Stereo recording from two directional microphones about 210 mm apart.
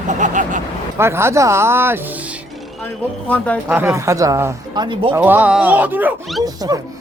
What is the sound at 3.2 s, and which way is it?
Speech, 5° left (ahead or behind).